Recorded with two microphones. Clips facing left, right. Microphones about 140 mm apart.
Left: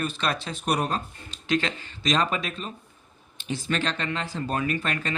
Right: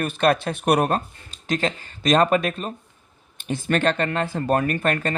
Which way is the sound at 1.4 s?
45° right (ahead or behind).